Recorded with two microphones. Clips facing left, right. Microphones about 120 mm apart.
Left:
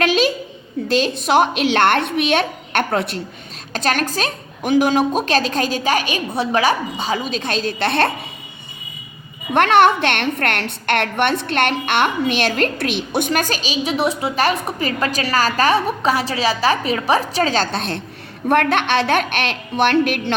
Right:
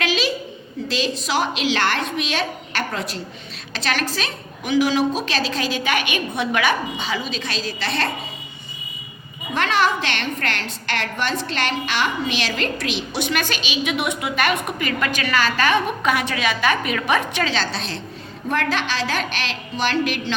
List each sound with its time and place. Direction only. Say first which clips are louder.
0.0 s a sound: left 6 dB; 50° left (ahead or behind)
0.9 s a woman's voice: left 6 dB; 50° left (ahead or behind)
3.7 s a woman's voice: left 4 dB; 45° left (ahead or behind)
9.5 s a woman's voice: left 7 dB; 60° left (ahead or behind)